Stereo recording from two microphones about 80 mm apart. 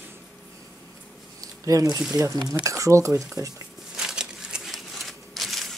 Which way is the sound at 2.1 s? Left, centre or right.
Right.